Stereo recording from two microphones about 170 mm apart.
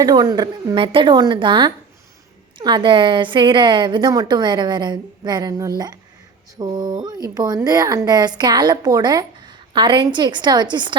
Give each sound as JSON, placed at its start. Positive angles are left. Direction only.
{"t": 0.0, "sound": "speech", "side_deg": -20}